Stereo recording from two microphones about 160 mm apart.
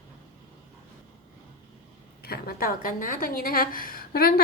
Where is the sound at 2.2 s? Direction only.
75° left (ahead or behind).